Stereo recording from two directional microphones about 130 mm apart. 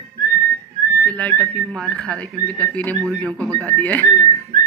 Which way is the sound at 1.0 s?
10° left (ahead or behind).